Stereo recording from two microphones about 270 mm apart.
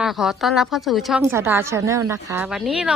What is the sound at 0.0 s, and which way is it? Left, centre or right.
A woman's voice, centre.